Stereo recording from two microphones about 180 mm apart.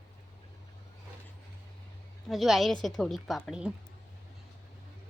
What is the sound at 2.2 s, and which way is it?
A woman's voice, centre (ahead or behind).